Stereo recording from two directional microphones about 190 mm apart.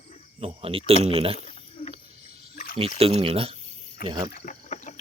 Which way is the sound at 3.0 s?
30° right (ahead or behind).